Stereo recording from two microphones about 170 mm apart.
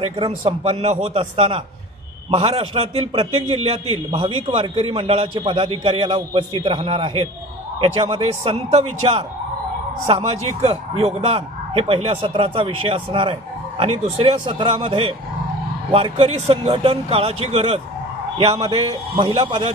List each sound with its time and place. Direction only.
0.5 s a man's voice: 40° right (ahead or behind)